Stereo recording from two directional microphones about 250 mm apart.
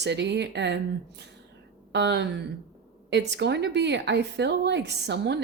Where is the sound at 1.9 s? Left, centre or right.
Right.